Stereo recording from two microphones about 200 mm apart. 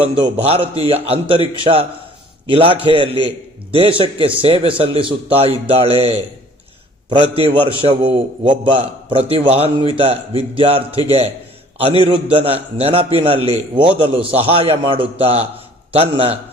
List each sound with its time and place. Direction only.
0.0 s a man's voice: 30° right (ahead or behind)